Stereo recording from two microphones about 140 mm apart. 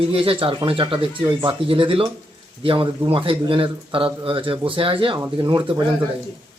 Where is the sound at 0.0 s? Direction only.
40° right (ahead or behind).